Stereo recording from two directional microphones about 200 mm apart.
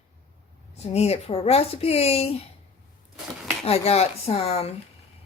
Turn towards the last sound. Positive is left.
turn(degrees=30)  # may be behind; listen again after turning